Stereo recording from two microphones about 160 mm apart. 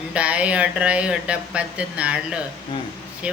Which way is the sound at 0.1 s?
10° right (ahead or behind).